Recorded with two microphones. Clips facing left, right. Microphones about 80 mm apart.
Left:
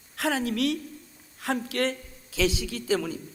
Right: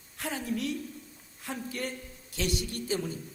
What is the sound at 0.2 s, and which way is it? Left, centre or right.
A woman's voice, left.